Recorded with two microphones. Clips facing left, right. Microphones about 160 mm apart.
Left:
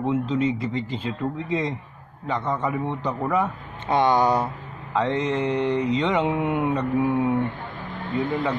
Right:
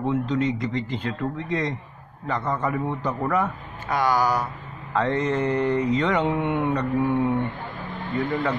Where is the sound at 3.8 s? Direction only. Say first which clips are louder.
Left 3 dB; 25° left (ahead or behind).